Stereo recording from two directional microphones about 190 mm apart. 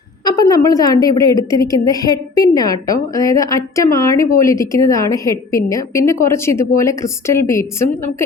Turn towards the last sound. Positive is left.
turn(degrees=15)  # may be behind; listen again after turning